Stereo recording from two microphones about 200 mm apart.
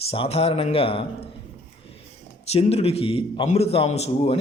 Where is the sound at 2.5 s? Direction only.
30° left (ahead or behind).